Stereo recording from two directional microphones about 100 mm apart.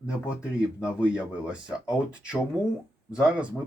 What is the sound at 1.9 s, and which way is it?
A man's voice, 10° right (ahead or behind).